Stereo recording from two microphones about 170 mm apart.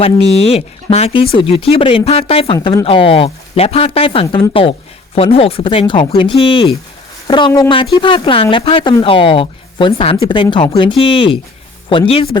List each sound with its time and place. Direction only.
0.0 s a woman's voice: 35° left (ahead or behind)